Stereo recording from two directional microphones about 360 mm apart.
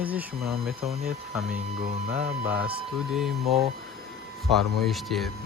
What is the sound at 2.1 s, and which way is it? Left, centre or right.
Speech, centre.